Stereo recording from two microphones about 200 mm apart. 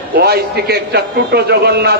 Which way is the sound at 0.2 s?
55° right (ahead or behind).